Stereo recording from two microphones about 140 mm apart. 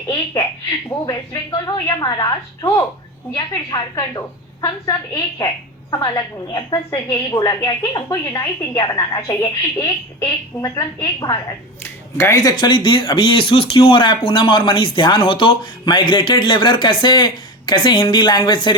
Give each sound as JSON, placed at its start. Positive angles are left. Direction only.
{"t": 0.9, "sound": "a woman's voice", "side_deg": 25}
{"t": 11.8, "sound": "speech", "side_deg": 20}